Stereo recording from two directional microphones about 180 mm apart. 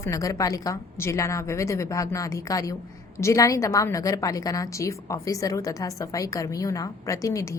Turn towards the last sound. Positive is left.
turn(degrees=15)  # may be behind; listen again after turning